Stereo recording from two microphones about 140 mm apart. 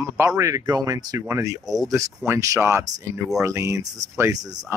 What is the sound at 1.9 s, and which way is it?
Speech, 20° right (ahead or behind).